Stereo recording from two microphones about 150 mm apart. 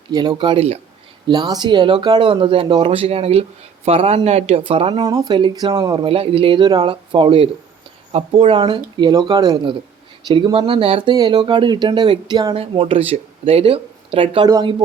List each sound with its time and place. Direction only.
0.1 s speech: 30° right (ahead or behind)
1.3 s speech: 30° right (ahead or behind)
4.9 s speech: 25° right (ahead or behind)
6.1 s speech: 40° right (ahead or behind)